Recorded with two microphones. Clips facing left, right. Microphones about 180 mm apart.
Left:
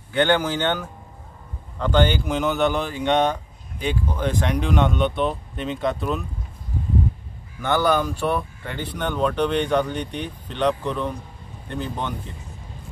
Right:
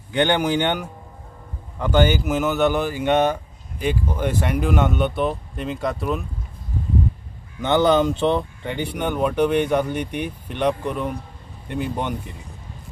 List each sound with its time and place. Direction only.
0.1 s speech: 15° right (ahead or behind)
7.6 s speech: 20° right (ahead or behind)